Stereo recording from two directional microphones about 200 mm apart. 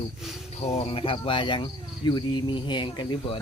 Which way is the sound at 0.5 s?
35° left (ahead or behind).